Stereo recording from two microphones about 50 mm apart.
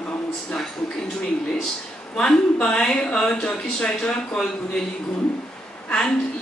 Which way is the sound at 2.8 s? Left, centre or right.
Centre.